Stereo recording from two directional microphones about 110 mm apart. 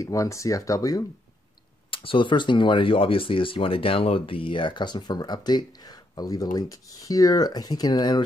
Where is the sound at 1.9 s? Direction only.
50° left (ahead or behind).